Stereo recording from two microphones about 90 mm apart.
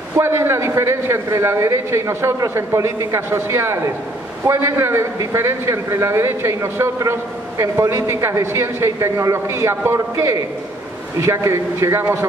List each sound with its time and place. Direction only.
0.2 s a man's voice: 30° right (ahead or behind)